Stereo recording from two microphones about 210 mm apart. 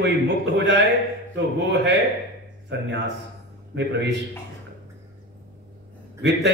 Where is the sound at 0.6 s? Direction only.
55° right (ahead or behind).